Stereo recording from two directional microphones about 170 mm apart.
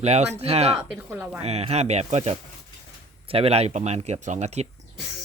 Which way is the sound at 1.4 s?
40° right (ahead or behind).